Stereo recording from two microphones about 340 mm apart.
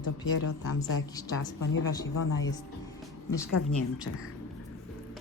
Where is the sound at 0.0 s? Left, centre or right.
Left.